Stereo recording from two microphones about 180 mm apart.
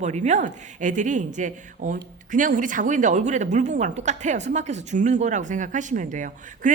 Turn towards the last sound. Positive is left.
turn(degrees=-45)  # may be behind; listen again after turning